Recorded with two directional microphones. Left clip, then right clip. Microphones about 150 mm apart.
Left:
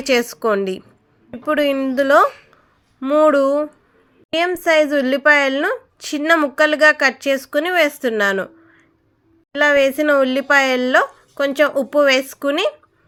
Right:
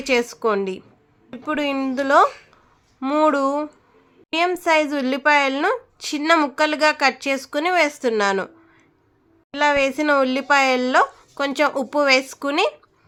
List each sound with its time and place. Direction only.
0.0 s a woman's voice: 20° left (ahead or behind)
9.6 s a woman's voice: 15° left (ahead or behind)